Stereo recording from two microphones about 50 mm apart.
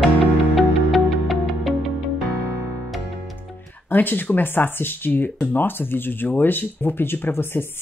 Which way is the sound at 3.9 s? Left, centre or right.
Left.